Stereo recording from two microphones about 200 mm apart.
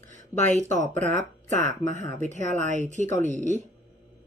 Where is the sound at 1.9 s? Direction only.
35° right (ahead or behind).